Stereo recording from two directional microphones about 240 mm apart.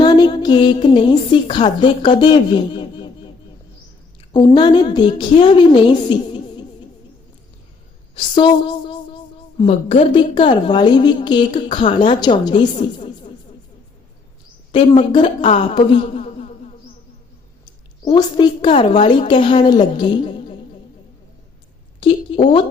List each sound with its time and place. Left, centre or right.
0.0 s a woman's voice: centre
4.3 s a woman's voice: centre
8.1 s a woman's voice: centre
14.7 s a woman's voice: left
18.0 s a woman's voice: centre
22.0 s a woman's voice: left